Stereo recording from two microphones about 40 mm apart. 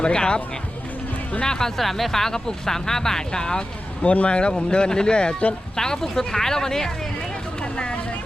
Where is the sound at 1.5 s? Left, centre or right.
Centre.